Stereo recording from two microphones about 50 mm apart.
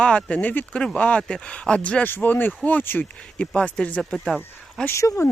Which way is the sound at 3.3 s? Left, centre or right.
Left.